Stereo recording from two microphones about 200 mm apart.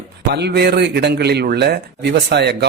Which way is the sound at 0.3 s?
55° right (ahead or behind).